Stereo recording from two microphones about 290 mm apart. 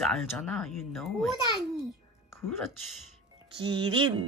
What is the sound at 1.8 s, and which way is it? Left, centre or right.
Babbling, centre.